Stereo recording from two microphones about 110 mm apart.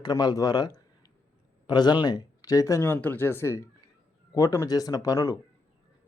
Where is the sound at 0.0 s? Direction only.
40° left (ahead or behind).